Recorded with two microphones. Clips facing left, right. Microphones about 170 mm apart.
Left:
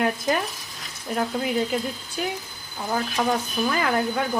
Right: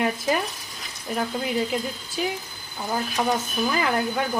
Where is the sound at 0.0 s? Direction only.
Centre (ahead or behind).